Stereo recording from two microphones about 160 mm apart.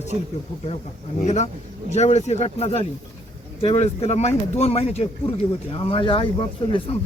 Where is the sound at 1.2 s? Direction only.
45° left (ahead or behind).